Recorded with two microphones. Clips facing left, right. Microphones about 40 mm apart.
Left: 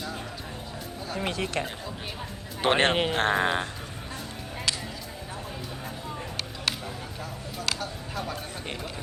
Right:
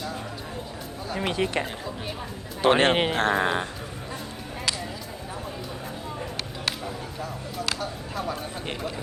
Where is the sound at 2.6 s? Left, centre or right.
Left.